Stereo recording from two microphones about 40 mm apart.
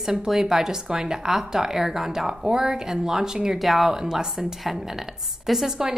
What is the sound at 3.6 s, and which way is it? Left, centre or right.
Speech, centre.